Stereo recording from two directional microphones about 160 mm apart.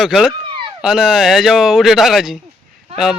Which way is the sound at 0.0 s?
Centre (ahead or behind).